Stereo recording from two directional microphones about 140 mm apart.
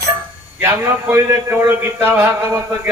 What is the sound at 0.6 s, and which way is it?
A man's voice, 15° right (ahead or behind).